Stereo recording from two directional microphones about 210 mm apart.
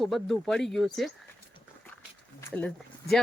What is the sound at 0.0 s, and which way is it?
Speech, centre (ahead or behind).